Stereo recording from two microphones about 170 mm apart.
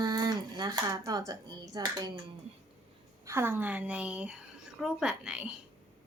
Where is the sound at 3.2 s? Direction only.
15° right (ahead or behind).